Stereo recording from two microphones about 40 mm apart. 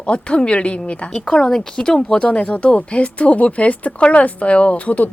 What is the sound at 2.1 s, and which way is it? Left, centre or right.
Speech, left.